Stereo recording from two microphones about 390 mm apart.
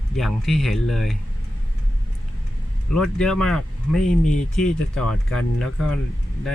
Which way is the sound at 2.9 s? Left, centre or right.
Centre.